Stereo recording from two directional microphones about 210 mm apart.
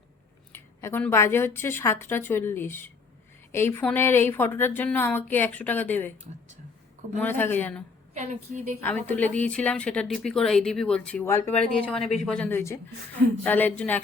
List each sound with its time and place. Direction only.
0.5 s a woman's voice: 10° left (ahead or behind)
7.2 s a woman's voice: 10° left (ahead or behind)
8.2 s a woman's voice: 35° right (ahead or behind)
9.0 s a woman's voice: 5° left (ahead or behind)